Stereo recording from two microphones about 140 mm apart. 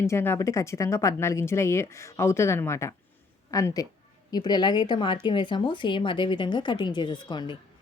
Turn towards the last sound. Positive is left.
turn(degrees=30)  # may be behind; listen again after turning